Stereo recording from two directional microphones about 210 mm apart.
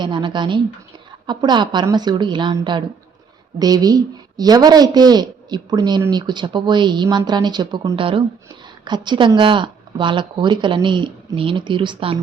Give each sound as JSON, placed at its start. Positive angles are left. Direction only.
{"t": 0.0, "sound": "a woman's voice", "side_deg": -20}